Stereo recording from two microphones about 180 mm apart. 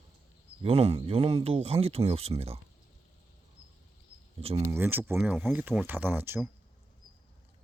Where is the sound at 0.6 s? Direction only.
35° right (ahead or behind).